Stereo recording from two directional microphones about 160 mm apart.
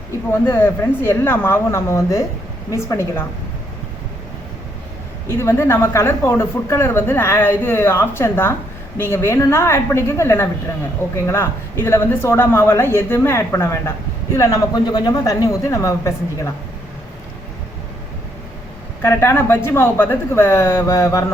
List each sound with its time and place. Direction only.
0.4 s speech: 15° left (ahead or behind)
5.3 s speech: 15° left (ahead or behind)
19.0 s speech: 15° left (ahead or behind)